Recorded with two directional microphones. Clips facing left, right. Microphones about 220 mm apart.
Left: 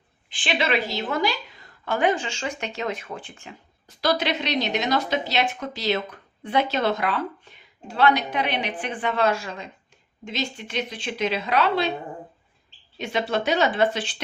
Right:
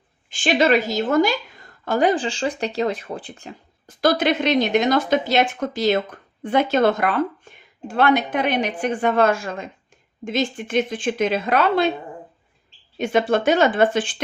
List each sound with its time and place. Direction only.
0.3 s a woman's voice: 45° right (ahead or behind)
13.0 s a woman's voice: 50° right (ahead or behind)